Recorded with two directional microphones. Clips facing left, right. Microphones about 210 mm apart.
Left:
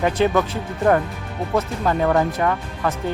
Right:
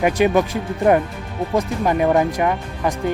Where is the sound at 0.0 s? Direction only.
15° right (ahead or behind).